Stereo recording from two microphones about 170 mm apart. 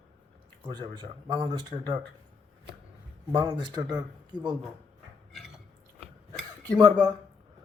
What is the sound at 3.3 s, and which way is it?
A man's voice, 20° right (ahead or behind).